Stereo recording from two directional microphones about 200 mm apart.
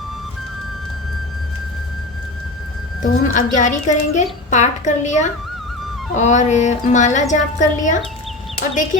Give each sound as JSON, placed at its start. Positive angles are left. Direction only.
{"t": 3.0, "sound": "a woman's voice", "side_deg": 40}